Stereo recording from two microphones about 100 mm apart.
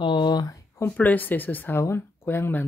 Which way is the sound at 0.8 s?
20° left (ahead or behind).